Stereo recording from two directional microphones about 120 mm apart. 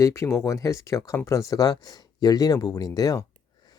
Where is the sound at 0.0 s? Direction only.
25° left (ahead or behind).